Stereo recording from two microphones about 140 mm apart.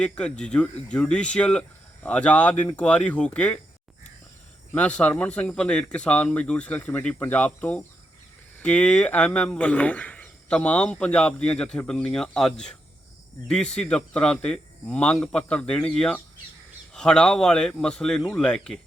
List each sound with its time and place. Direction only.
0.0 s speech: 5° left (ahead or behind)
4.7 s speech: 10° left (ahead or behind)